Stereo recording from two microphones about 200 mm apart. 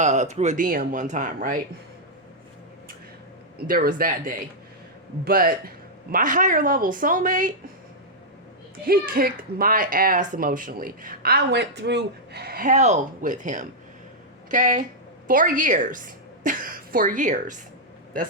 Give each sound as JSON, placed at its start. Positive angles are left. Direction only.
{"t": 0.0, "sound": "speech", "side_deg": -35}
{"t": 3.7, "sound": "speech", "side_deg": -45}
{"t": 8.8, "sound": "speech", "side_deg": -45}